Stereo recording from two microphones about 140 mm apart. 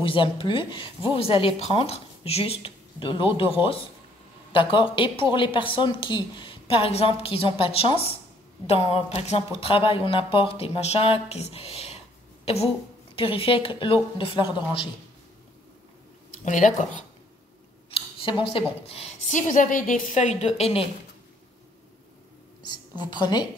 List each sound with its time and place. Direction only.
0.0 s speech: 35° left (ahead or behind)
13.1 s speech: 40° left (ahead or behind)
16.4 s speech: 65° left (ahead or behind)
17.9 s speech: 40° left (ahead or behind)
22.9 s speech: 30° left (ahead or behind)